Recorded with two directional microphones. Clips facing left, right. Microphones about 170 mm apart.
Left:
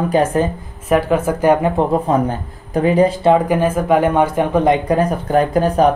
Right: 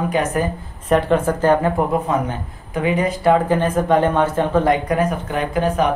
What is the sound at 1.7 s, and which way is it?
Speech, 35° left (ahead or behind).